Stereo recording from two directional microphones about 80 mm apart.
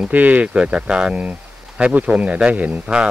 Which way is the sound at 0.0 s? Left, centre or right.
Centre.